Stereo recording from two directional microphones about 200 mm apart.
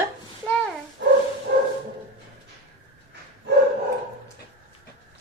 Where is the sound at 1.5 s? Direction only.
60° right (ahead or behind).